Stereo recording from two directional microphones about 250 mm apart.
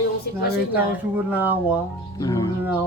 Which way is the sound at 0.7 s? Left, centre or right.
Centre.